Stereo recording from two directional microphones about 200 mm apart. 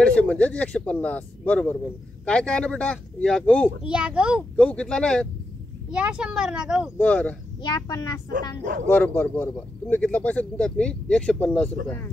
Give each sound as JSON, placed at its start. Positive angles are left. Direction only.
{"t": 0.0, "sound": "speech", "side_deg": 5}
{"t": 7.0, "sound": "speech", "side_deg": 5}
{"t": 7.6, "sound": "speech", "side_deg": 20}